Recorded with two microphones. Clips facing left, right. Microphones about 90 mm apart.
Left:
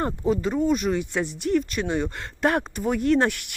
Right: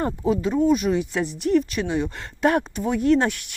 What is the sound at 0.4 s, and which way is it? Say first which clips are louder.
Speech: right 5 dB; centre (ahead or behind).